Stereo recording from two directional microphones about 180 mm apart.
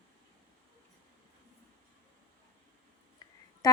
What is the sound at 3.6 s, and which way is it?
Speech, 20° left (ahead or behind).